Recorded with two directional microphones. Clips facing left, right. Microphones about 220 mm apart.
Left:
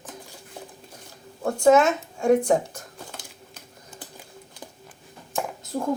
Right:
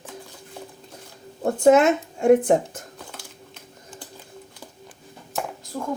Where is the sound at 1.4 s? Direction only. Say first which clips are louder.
Right 2 dB; 25° right (ahead or behind).